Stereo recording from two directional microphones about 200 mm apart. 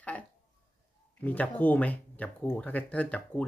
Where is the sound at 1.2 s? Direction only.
10° left (ahead or behind).